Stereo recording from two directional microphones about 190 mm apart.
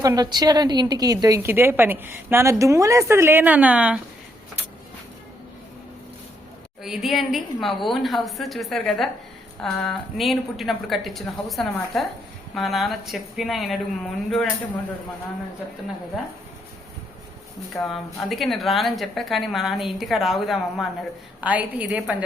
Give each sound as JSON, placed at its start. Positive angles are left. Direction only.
{"t": 0.0, "sound": "a woman's voice", "side_deg": -20}
{"t": 6.8, "sound": "a woman's voice", "side_deg": 0}
{"t": 17.7, "sound": "a woman's voice", "side_deg": 5}